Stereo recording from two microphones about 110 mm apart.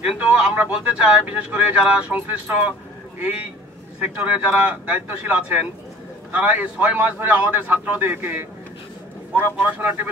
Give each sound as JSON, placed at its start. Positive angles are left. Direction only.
{"t": 0.2, "sound": "a man's voice", "side_deg": -10}